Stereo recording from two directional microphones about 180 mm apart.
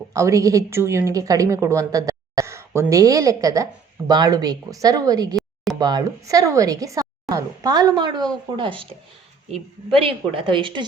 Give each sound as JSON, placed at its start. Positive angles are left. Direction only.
{"t": 0.1, "sound": "speech", "side_deg": -15}